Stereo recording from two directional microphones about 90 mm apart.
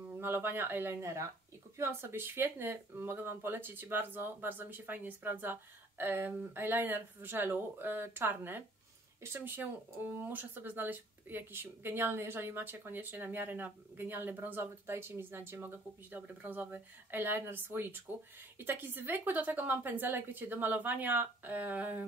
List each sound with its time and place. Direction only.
0.2 s speech: 25° right (ahead or behind)